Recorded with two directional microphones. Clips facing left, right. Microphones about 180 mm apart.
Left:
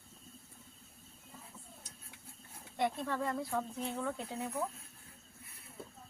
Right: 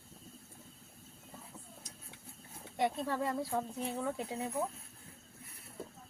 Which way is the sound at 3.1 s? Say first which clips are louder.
Right 1 dB; 15° right (ahead or behind).